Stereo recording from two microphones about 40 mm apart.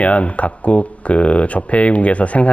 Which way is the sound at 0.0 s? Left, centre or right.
Left.